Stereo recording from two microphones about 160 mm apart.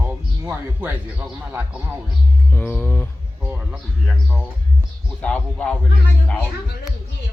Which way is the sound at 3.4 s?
5° right (ahead or behind).